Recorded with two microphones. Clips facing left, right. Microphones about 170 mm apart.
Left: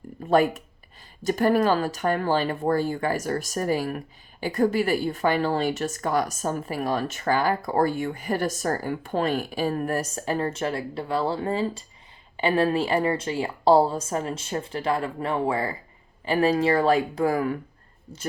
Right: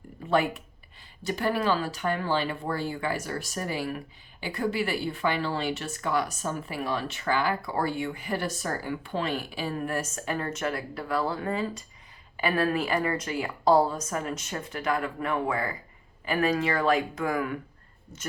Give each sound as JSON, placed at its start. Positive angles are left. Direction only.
{"t": 0.3, "sound": "a woman's voice", "side_deg": 45}